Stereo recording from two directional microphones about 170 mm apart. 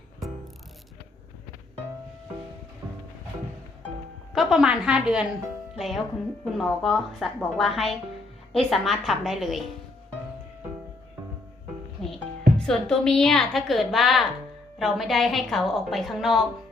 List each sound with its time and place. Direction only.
2.8 s music: 20° right (ahead or behind)
4.4 s a woman's voice: 5° right (ahead or behind)
12.1 s a woman's voice: 5° left (ahead or behind)